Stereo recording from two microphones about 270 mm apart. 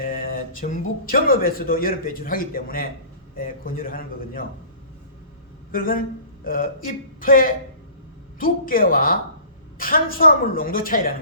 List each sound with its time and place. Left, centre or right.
0.0 s speech: left
5.7 s speech: left